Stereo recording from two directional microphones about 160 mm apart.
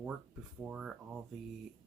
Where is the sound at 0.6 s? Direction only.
5° right (ahead or behind).